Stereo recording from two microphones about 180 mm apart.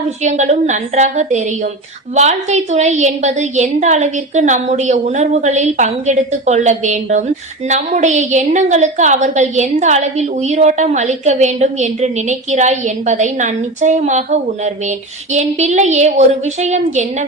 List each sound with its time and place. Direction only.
0.2 s a woman's voice: 40° right (ahead or behind)